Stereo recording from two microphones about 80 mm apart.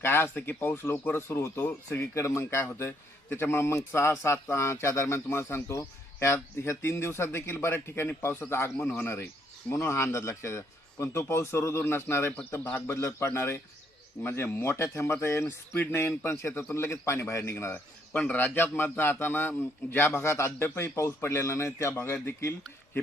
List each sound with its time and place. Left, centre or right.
0.0 s a man's voice: left
18.1 s a man's voice: centre